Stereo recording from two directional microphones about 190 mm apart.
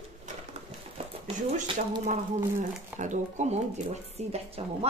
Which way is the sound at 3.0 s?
40° right (ahead or behind).